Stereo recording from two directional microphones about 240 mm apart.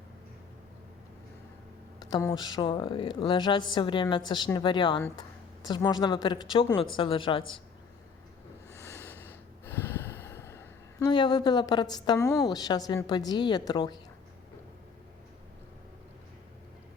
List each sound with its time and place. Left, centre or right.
2.0 s a woman's voice: centre
8.7 s snort: centre